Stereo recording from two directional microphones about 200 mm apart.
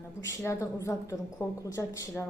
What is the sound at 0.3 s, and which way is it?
A woman's voice, 15° left (ahead or behind).